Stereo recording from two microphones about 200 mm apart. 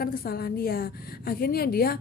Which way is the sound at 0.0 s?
50° left (ahead or behind).